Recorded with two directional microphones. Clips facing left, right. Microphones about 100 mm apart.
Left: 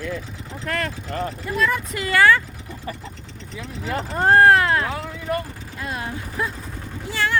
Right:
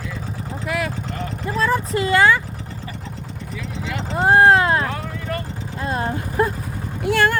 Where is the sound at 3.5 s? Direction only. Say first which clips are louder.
Left 1 dB; 40° left (ahead or behind).